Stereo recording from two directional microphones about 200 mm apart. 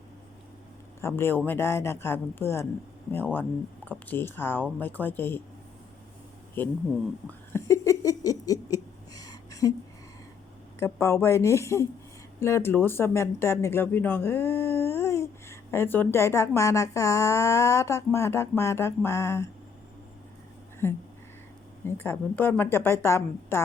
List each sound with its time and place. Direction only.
1.0 s speech: 10° left (ahead or behind)
3.8 s speech: 10° left (ahead or behind)
6.6 s speech: 10° left (ahead or behind)
7.3 s a sound: 15° left (ahead or behind)
10.8 s speech: 10° left (ahead or behind)
20.8 s speech: 10° left (ahead or behind)